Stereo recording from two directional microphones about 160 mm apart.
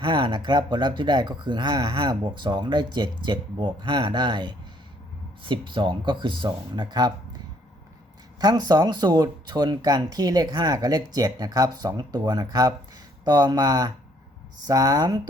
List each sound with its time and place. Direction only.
0.0 s speech: 30° right (ahead or behind)
8.4 s speech: 25° right (ahead or behind)